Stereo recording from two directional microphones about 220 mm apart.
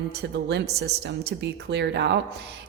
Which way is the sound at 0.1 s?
50° right (ahead or behind).